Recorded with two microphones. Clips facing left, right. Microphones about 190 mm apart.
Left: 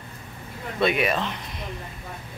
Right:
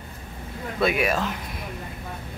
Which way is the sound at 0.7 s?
Centre (ahead or behind).